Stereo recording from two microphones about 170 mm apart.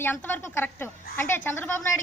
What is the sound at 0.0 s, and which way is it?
A woman's voice, 10° left (ahead or behind).